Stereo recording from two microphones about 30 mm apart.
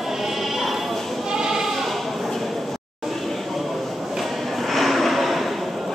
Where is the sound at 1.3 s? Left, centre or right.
Centre.